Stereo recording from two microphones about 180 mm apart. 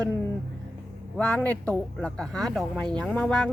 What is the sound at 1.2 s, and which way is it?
Speech, 10° left (ahead or behind).